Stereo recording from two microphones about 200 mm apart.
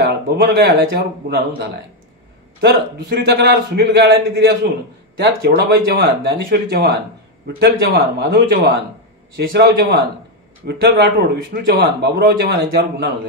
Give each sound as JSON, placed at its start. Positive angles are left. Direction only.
{"t": 0.0, "sound": "a man's voice", "side_deg": -55}